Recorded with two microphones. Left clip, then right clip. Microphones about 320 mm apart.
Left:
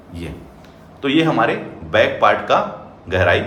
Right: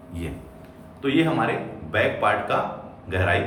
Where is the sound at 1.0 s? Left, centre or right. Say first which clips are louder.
Left 6 dB; centre.